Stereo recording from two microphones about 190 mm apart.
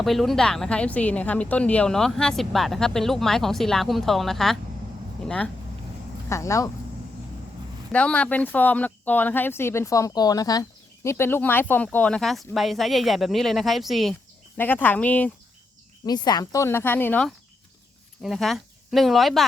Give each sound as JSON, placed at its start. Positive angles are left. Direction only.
{"t": 0.0, "sound": "speech", "side_deg": 0}
{"t": 6.2, "sound": "speech", "side_deg": 15}
{"t": 7.9, "sound": "speech", "side_deg": 5}
{"t": 16.0, "sound": "speech", "side_deg": 20}